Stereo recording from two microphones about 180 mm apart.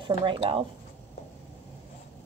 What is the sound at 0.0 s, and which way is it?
Speech, 25° right (ahead or behind).